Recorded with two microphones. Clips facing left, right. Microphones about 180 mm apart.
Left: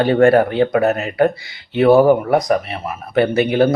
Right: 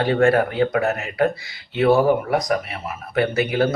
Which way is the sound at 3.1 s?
25° left (ahead or behind).